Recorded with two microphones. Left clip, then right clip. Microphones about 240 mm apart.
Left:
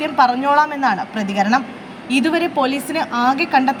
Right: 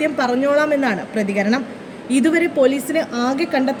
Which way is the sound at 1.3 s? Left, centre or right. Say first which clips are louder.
Left 5 dB; left.